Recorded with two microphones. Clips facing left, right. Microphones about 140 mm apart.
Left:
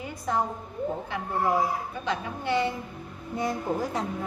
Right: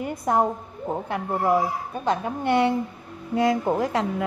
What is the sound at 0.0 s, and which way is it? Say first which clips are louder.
A woman's voice: right 6 dB; 55° right (ahead or behind).